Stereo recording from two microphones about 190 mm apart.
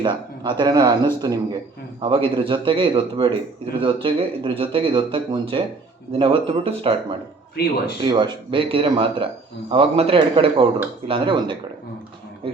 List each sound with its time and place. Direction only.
0.0 s speech: 25° right (ahead or behind)
7.5 s speech: 55° left (ahead or behind)
8.0 s speech: 25° right (ahead or behind)